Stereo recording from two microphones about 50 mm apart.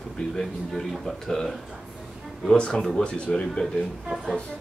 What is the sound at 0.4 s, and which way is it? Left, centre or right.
A man's voice, centre.